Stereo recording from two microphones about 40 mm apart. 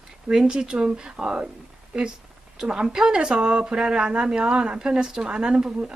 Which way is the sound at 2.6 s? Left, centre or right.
Centre.